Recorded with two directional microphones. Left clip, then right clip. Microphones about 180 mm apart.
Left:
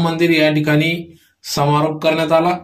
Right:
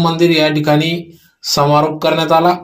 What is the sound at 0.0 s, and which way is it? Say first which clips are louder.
Speech: right 2 dB; 10° right (ahead or behind).